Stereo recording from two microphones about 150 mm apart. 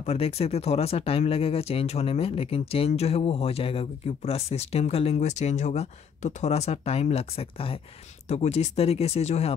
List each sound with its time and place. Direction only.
0.0 s speech: 45° left (ahead or behind)